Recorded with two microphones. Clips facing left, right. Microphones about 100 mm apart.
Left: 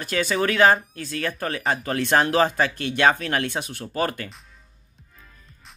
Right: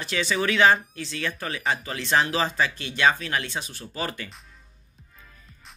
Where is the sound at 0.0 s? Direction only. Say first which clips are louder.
Left 3 dB; 50° left (ahead or behind).